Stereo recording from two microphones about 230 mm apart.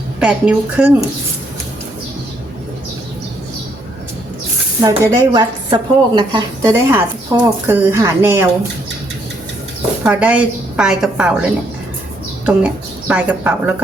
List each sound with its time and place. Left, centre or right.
0.2 s a woman's voice: centre
4.8 s a woman's voice: centre
10.0 s a woman's voice: centre